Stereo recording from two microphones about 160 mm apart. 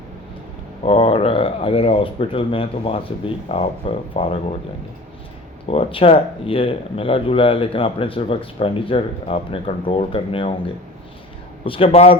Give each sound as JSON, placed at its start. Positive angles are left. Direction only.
{"t": 0.9, "sound": "speech", "side_deg": 35}
{"t": 5.6, "sound": "speech", "side_deg": 35}
{"t": 11.6, "sound": "speech", "side_deg": 35}